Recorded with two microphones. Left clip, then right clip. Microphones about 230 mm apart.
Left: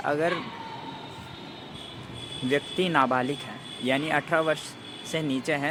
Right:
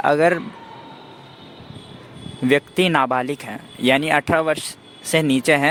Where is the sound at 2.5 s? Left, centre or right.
Right.